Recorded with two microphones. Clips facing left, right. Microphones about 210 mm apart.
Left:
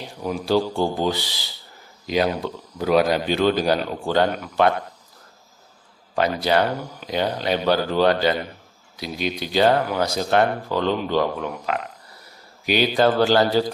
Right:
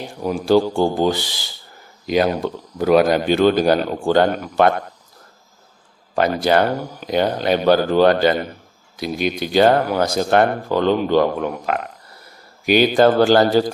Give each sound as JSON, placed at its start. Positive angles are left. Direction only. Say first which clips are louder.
{"t": 0.0, "sound": "speech", "louder": "right 4 dB", "side_deg": -45}
{"t": 6.1, "sound": "speech", "louder": "right 3 dB", "side_deg": -50}